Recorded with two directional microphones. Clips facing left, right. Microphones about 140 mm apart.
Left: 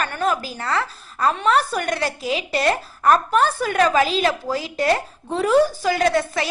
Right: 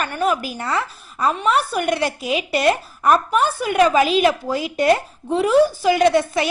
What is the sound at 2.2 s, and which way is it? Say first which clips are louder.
Speech: right 2 dB; 30° left (ahead or behind).